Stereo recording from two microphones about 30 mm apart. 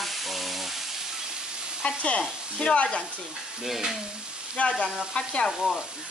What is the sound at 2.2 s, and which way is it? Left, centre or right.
Speech, left.